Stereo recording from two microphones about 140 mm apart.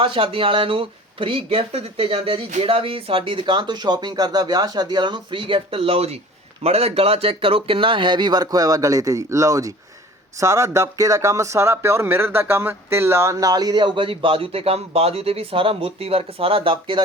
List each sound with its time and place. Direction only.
0.0 s speech: 40° right (ahead or behind)